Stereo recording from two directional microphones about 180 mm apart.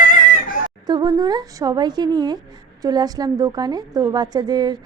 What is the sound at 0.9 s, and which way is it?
A woman's voice, 25° right (ahead or behind).